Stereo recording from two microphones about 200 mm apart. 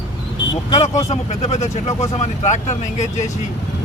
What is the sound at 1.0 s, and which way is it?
Speech, 35° left (ahead or behind).